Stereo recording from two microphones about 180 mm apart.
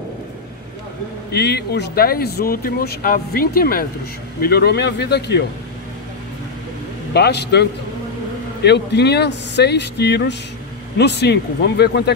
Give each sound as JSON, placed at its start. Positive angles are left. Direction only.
{"t": 1.3, "sound": "speech", "side_deg": 65}
{"t": 7.2, "sound": "speech", "side_deg": 65}
{"t": 8.6, "sound": "speech", "side_deg": 70}